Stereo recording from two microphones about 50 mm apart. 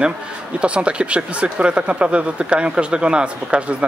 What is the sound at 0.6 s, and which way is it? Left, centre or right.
Speech, right.